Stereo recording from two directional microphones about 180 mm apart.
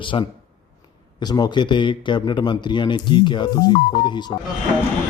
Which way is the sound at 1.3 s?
25° left (ahead or behind).